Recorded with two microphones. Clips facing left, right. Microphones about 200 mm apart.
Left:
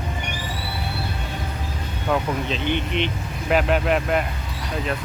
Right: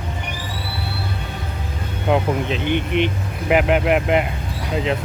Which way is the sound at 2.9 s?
55° right (ahead or behind).